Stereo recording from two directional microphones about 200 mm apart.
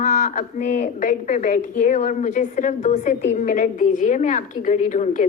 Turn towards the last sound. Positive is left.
turn(degrees=40)  # may be behind; listen again after turning